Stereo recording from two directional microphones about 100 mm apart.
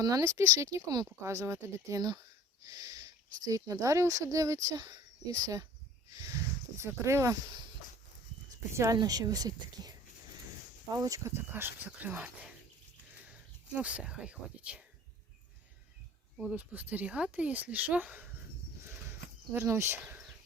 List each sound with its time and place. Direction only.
0.0 s speech: 35° right (ahead or behind)
2.0 s speech: 45° right (ahead or behind)
6.8 s speech: 25° right (ahead or behind)
8.7 s speech: 30° right (ahead or behind)
10.9 s speech: 35° right (ahead or behind); by 12.5 s 15° right (ahead or behind)
13.7 s speech: 10° right (ahead or behind)
16.4 s speech: 15° right (ahead or behind)
19.5 s speech: 25° right (ahead or behind)